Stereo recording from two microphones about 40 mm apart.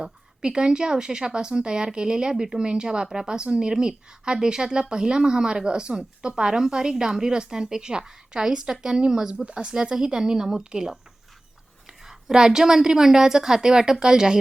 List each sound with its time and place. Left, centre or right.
0.0 s a woman's voice: right